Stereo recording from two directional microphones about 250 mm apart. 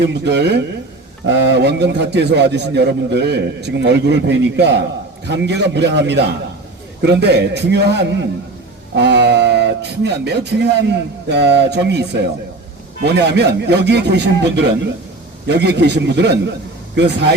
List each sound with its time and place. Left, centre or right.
0.0 s a man's voice: right